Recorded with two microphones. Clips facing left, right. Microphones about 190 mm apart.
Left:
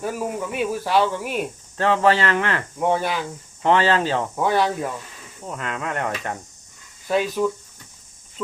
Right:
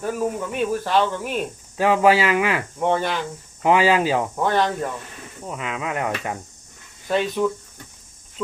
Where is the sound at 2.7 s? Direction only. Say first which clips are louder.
Left 2 dB; 5° left (ahead or behind).